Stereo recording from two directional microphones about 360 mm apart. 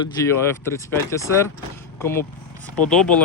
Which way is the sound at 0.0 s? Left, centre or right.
Centre.